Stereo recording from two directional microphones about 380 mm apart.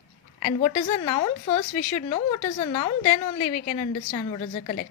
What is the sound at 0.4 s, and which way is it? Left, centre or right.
A woman's voice, centre.